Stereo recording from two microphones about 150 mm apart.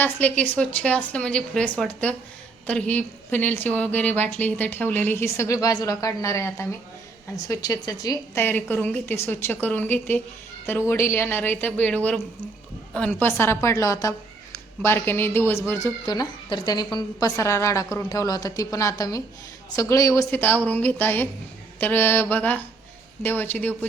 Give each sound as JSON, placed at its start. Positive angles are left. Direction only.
{"t": 0.0, "sound": "a woman's voice", "side_deg": 10}
{"t": 8.4, "sound": "a woman's voice", "side_deg": 10}
{"t": 16.0, "sound": "a woman's voice", "side_deg": 30}